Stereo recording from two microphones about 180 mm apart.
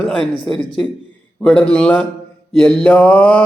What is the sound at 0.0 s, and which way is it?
Speech, 5° left (ahead or behind).